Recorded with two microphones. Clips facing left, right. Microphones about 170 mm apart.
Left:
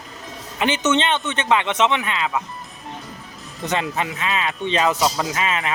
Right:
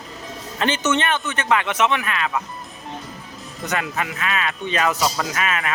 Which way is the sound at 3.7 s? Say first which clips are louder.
Left 2 dB; 25° left (ahead or behind).